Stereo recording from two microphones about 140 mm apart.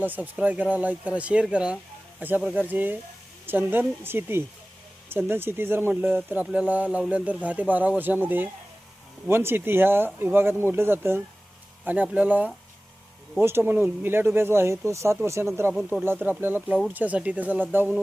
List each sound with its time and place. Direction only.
0.0 s speech: 10° right (ahead or behind)